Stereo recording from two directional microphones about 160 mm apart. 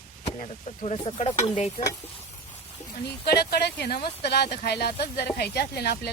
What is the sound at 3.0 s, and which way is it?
Speech, 85° left.